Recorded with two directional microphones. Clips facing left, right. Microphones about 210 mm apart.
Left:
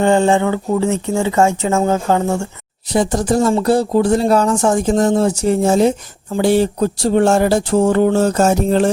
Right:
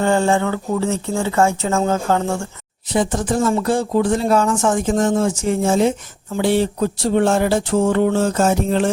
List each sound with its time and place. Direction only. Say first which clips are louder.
0.0 s speech: left 4 dB; 15° left (ahead or behind)
2.9 s speech: left 3 dB; 40° left (ahead or behind)